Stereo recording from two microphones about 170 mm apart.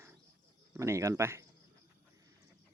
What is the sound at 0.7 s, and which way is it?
Speech, 15° right (ahead or behind).